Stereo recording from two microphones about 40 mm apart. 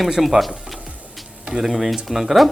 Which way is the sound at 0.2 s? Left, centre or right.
Centre.